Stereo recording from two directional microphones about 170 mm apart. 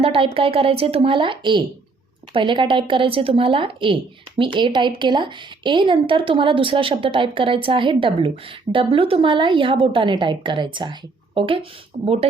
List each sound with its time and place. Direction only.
0.0 s speech: 35° right (ahead or behind)